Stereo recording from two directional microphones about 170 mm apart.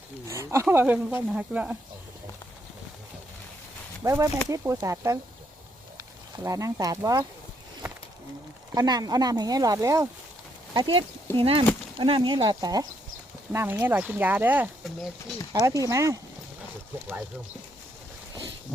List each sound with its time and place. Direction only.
0.3 s speech: 15° right (ahead or behind)
4.0 s speech: 20° right (ahead or behind)
6.4 s speech: 20° right (ahead or behind)
8.7 s speech: 20° right (ahead or behind)
10.8 s speech: 30° right (ahead or behind)
13.5 s speech: 15° right (ahead or behind)
15.5 s speech: 20° right (ahead or behind)